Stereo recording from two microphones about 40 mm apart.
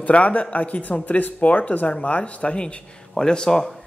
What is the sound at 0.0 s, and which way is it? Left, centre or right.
Speech, left.